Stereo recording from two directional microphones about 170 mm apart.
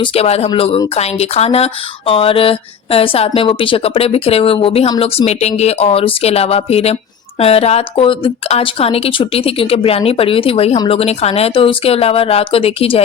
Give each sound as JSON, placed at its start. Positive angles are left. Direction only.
{"t": 0.0, "sound": "speech", "side_deg": 35}